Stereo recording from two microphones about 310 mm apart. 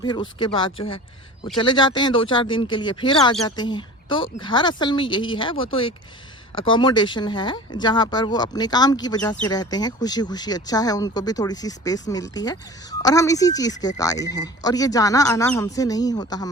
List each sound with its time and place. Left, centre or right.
0.0 s speech: centre